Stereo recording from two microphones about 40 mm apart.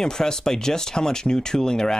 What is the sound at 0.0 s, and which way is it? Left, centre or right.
Speech, centre.